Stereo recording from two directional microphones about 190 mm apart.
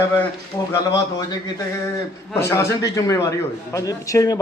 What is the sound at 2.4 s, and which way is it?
A man's voice, 15° left (ahead or behind).